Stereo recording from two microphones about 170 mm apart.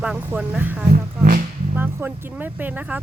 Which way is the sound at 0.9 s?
55° right (ahead or behind).